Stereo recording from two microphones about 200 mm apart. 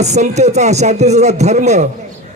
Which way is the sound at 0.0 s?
35° right (ahead or behind).